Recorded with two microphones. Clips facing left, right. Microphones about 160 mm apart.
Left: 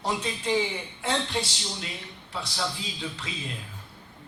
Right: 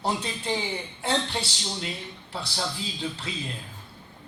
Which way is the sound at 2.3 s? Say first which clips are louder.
Even; 30° right (ahead or behind).